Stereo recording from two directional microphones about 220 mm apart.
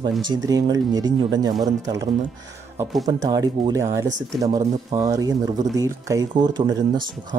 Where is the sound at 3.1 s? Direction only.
15° right (ahead or behind).